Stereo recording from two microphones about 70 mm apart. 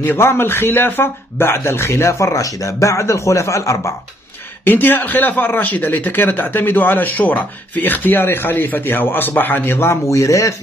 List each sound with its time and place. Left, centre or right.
0.0 s speech: left
4.6 s speech: left